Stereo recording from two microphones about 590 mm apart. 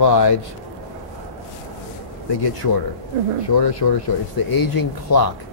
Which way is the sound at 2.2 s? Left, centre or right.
Left.